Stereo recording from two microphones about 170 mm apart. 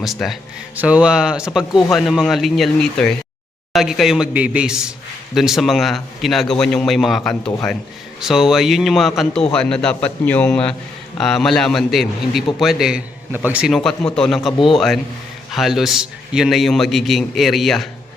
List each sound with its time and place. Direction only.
0.0 s a man's voice: centre (ahead or behind)
15.5 s a man's voice: centre (ahead or behind)